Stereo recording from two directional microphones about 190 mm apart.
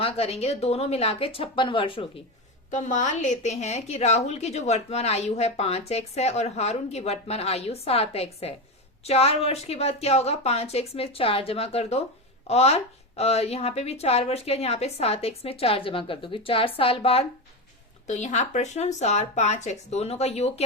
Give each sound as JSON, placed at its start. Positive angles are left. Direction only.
{"t": 0.0, "sound": "a woman's voice", "side_deg": 30}
{"t": 2.6, "sound": "a woman's voice", "side_deg": 40}